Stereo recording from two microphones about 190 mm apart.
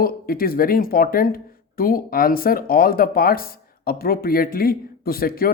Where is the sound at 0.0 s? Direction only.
50° left (ahead or behind).